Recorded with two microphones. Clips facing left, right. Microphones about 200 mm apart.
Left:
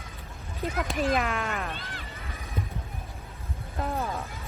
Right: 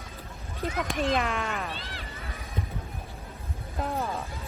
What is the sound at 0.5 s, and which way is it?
Speech, centre (ahead or behind).